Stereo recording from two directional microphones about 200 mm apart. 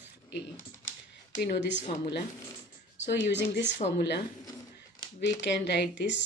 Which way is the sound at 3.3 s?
60° left (ahead or behind).